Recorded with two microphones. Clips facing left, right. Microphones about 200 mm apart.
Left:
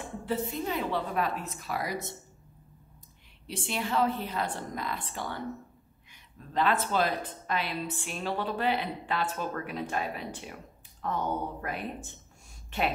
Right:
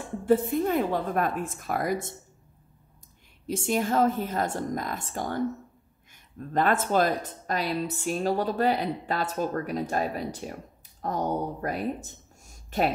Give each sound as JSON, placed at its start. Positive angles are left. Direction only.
{"t": 0.2, "sound": "a woman's voice", "side_deg": -50}
{"t": 3.4, "sound": "a woman's voice", "side_deg": -45}